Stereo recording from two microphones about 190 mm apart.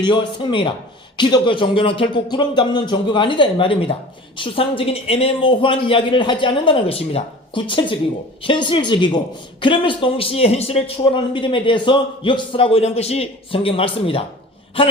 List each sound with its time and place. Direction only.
0.0 s speech: 25° left (ahead or behind)